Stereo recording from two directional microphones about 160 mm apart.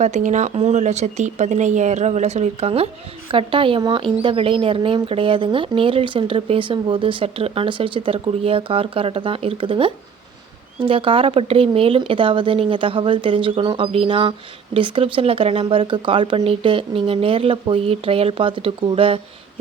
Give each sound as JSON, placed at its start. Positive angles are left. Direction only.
{"t": 0.0, "sound": "speech", "side_deg": -50}